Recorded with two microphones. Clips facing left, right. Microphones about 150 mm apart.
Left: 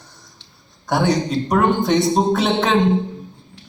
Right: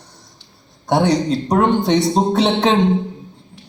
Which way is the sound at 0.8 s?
30° right (ahead or behind).